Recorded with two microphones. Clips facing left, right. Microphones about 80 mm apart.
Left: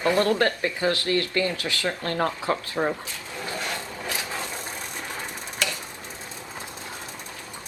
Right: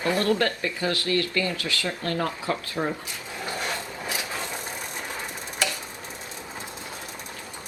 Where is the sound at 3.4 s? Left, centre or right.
Right.